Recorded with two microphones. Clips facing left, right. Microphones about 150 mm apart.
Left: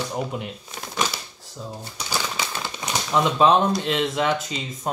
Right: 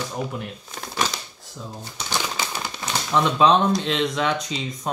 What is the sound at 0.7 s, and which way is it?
Shuffling cards, centre (ahead or behind).